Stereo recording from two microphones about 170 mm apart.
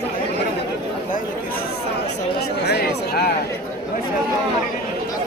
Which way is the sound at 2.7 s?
70° left (ahead or behind).